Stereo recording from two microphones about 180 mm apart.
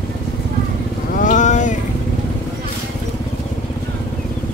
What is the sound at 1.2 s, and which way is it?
Vehicle, 45° left (ahead or behind).